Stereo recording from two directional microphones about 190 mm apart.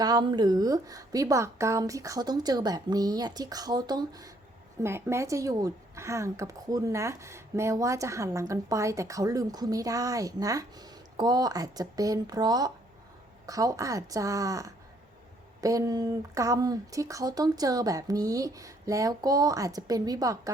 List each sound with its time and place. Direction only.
0.0 s speech: 20° right (ahead or behind)